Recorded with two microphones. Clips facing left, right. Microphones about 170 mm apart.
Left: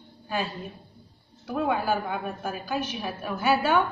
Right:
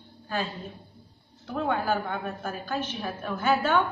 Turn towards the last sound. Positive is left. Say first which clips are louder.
# left 1 dB
turn(degrees=10)  # may be behind; listen again after turning